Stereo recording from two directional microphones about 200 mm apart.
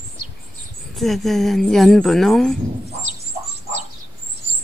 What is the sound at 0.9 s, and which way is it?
Speech, centre (ahead or behind).